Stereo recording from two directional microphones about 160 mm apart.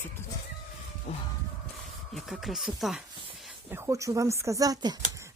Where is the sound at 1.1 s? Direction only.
40° left (ahead or behind).